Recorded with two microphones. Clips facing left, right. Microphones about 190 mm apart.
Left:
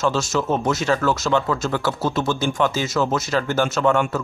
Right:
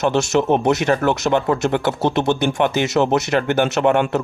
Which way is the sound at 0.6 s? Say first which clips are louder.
Right 3 dB; 60° right (ahead or behind).